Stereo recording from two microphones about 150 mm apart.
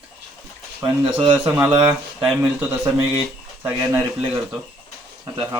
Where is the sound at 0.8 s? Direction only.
35° right (ahead or behind).